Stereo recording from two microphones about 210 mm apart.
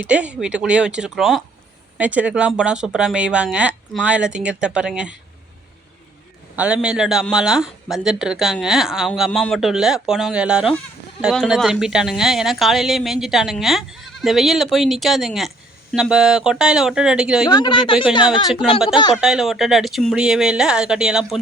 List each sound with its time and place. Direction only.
0.0 s a woman's voice: 5° right (ahead or behind)
6.6 s a woman's voice: 5° right (ahead or behind)
17.5 s speech: 20° left (ahead or behind)
19.2 s a woman's voice: centre (ahead or behind)